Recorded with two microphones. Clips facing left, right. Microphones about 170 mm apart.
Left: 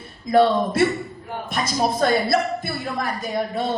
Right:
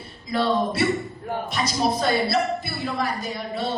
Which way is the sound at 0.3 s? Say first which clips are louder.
Left 5 dB; 50° left (ahead or behind).